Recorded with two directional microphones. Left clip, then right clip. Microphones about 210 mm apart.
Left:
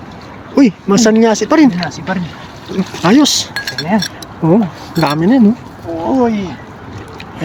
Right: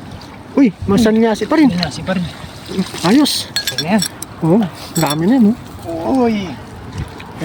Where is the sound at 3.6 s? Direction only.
45° right (ahead or behind).